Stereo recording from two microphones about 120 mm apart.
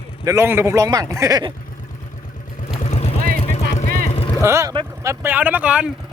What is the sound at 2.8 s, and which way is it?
Vehicle, 60° left (ahead or behind).